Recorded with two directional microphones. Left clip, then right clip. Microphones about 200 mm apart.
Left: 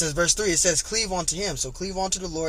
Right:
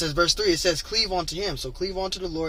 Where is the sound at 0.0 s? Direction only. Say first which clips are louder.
Right 1 dB; 30° left (ahead or behind).